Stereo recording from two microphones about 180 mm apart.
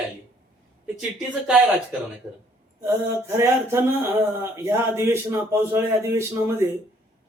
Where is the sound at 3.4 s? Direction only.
15° right (ahead or behind).